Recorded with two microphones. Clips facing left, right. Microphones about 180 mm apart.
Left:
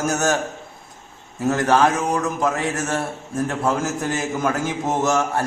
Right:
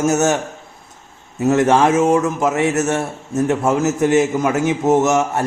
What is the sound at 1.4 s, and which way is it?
A man's voice, 20° right (ahead or behind).